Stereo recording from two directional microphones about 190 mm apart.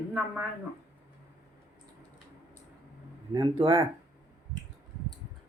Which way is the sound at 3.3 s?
25° right (ahead or behind).